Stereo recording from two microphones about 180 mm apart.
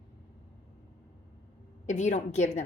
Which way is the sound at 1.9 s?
40° left (ahead or behind).